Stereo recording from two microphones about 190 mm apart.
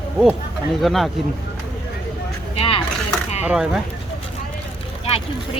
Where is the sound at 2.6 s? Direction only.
30° left (ahead or behind).